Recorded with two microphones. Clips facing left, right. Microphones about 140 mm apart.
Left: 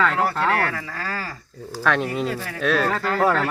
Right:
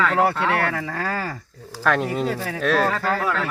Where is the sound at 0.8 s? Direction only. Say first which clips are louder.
Right 4 dB; 60° right (ahead or behind).